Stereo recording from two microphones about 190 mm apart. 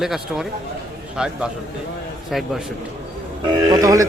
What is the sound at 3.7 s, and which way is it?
Speech, 20° right (ahead or behind).